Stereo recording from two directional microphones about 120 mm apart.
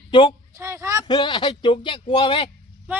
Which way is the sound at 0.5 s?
25° right (ahead or behind).